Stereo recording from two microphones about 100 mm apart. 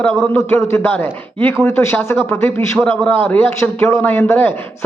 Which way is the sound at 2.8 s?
15° left (ahead or behind).